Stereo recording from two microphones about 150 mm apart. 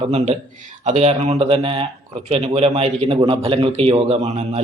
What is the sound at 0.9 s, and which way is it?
A man's voice, 45° right (ahead or behind).